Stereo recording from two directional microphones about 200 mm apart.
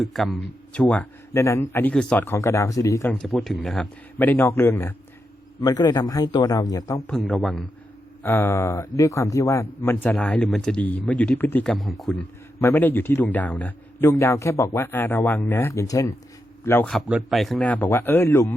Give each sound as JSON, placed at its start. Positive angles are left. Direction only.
{"t": 0.0, "sound": "speech", "side_deg": 0}
{"t": 7.1, "sound": "speech", "side_deg": 5}